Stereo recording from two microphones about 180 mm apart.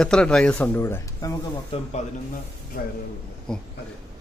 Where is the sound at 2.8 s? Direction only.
60° left (ahead or behind).